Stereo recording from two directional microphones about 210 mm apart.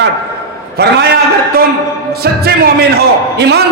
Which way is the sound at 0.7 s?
50° right (ahead or behind).